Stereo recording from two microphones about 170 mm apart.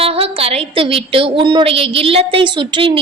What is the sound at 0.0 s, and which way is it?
A woman's voice, 35° right (ahead or behind).